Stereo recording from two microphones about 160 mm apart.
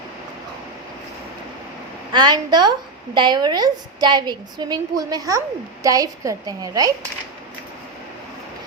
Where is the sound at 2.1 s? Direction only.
25° right (ahead or behind).